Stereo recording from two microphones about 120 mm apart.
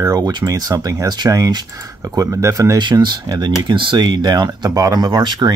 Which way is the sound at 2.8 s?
40° right (ahead or behind).